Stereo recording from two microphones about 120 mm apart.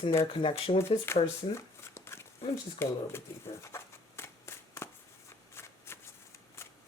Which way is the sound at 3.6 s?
20° left (ahead or behind).